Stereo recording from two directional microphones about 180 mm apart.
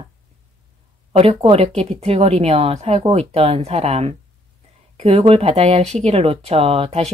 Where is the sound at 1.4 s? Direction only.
35° right (ahead or behind).